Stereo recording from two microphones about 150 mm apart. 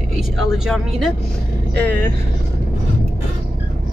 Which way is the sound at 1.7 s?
10° left (ahead or behind).